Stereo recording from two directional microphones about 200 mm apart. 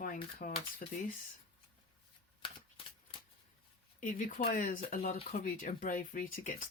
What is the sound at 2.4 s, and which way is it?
Shuffling cards, 25° left (ahead or behind).